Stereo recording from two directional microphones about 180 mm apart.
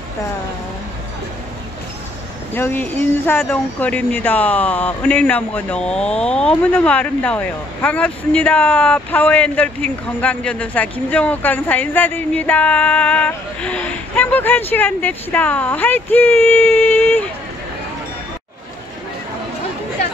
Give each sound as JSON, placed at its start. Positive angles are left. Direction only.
{"t": 2.5, "sound": "speech", "side_deg": 10}